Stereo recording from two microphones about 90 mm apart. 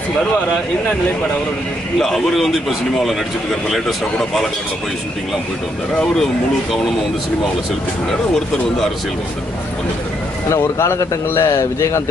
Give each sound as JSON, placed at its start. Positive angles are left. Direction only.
{"t": 2.0, "sound": "speech", "side_deg": 5}
{"t": 3.7, "sound": "speech", "side_deg": 0}
{"t": 10.5, "sound": "speech", "side_deg": 30}